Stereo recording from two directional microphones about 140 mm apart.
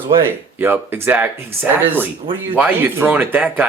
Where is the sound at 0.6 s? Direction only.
15° right (ahead or behind).